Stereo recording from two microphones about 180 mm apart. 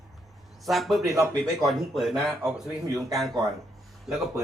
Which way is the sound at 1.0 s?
20° right (ahead or behind).